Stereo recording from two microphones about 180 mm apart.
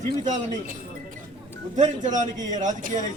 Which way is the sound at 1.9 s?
45° right (ahead or behind).